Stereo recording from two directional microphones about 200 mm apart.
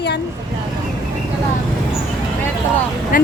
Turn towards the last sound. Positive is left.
turn(degrees=45)  # may be behind; listen again after turning